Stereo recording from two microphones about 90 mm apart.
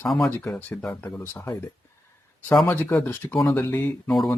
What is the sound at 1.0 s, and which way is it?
Speech, 25° left (ahead or behind).